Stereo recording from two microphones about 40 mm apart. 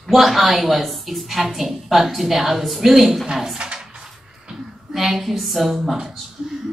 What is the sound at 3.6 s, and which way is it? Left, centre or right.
Drawer open or close, right.